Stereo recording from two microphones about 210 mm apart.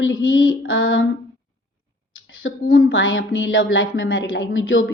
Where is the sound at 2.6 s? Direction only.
80° left.